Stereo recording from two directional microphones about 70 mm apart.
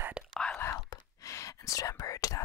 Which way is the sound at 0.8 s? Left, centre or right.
Left.